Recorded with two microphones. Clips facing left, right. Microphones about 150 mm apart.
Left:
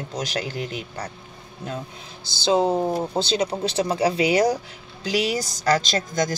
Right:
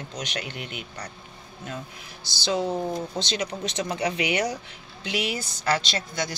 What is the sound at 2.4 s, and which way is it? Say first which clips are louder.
A woman's voice: left 6 dB; 30° left (ahead or behind).